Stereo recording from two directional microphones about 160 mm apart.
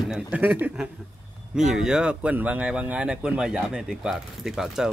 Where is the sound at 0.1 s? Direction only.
10° right (ahead or behind).